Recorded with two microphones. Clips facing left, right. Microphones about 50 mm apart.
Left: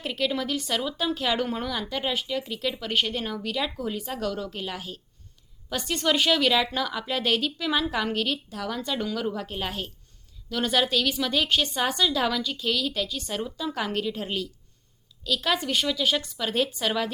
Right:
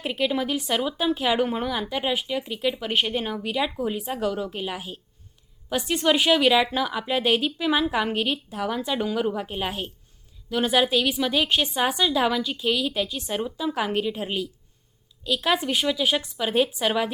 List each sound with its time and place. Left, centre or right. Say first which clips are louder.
0.0 s a woman's voice: right 3 dB; centre